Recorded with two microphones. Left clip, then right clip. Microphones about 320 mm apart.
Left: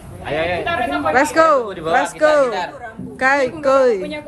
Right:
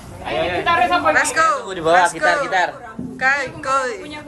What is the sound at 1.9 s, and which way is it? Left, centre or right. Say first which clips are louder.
Speech: right 4 dB; centre.